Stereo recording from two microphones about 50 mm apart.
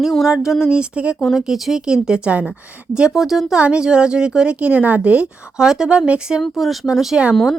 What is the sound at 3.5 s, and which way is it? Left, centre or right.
Speech, right.